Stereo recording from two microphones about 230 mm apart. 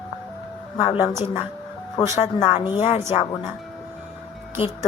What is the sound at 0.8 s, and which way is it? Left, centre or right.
Speech, centre.